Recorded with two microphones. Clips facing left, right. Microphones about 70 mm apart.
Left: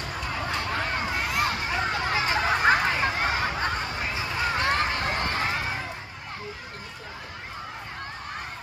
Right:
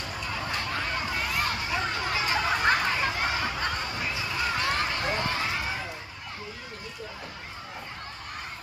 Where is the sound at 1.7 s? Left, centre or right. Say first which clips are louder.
Left 3 dB; left.